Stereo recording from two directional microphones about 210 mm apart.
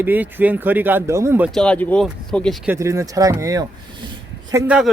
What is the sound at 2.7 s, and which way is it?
Speech, 15° right (ahead or behind).